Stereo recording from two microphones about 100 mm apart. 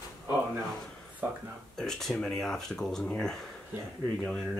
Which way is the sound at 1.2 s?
20° right (ahead or behind).